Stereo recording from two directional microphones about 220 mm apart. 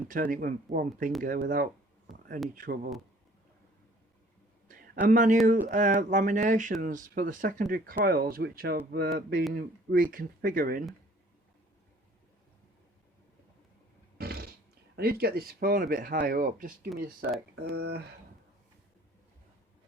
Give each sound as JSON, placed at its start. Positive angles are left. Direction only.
{"t": 0.1, "sound": "speech", "side_deg": -40}
{"t": 5.0, "sound": "speech", "side_deg": -35}
{"t": 14.2, "sound": "a sound", "side_deg": -45}
{"t": 14.9, "sound": "speech", "side_deg": -45}